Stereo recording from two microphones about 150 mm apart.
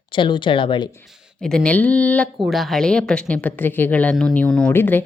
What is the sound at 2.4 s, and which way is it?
A woman's voice, centre (ahead or behind).